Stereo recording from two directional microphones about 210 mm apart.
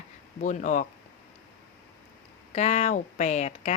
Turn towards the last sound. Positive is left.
turn(degrees=30)  # may be behind; listen again after turning